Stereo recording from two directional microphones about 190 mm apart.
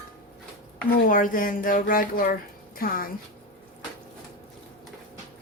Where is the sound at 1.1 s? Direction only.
45° left (ahead or behind).